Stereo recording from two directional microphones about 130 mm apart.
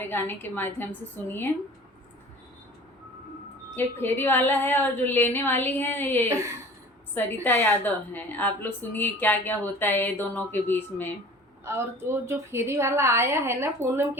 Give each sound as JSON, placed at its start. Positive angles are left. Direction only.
{"t": 0.0, "sound": "speech", "side_deg": 15}
{"t": 3.8, "sound": "speech", "side_deg": 15}
{"t": 7.4, "sound": "speech", "side_deg": 15}
{"t": 11.6, "sound": "a woman's voice", "side_deg": -20}